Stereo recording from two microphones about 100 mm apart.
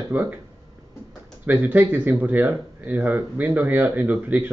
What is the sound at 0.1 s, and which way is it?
Speech, 20° right (ahead or behind).